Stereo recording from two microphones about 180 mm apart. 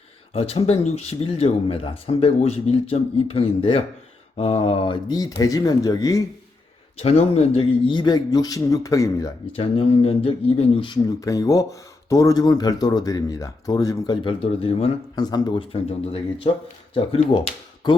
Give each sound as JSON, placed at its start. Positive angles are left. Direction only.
{"t": 0.3, "sound": "speech", "side_deg": 35}
{"t": 7.0, "sound": "speech", "side_deg": 35}
{"t": 9.6, "sound": "speech", "side_deg": 30}
{"t": 14.4, "sound": "speech", "side_deg": 30}
{"t": 15.1, "sound": "speech", "side_deg": 20}